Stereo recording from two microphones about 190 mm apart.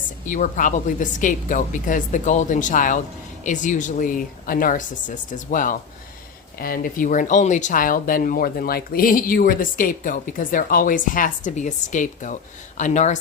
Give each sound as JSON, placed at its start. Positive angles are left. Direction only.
{"t": 0.3, "sound": "speech", "side_deg": 45}